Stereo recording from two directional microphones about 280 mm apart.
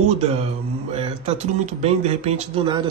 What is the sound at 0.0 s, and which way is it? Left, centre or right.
A man's voice, right.